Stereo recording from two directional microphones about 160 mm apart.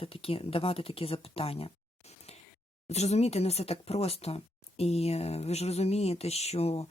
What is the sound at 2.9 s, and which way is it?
Speech, 45° left (ahead or behind).